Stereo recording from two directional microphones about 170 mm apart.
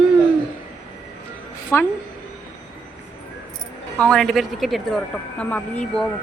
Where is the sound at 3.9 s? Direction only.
5° left (ahead or behind).